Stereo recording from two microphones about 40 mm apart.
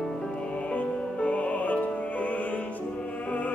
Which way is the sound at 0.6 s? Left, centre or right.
Left.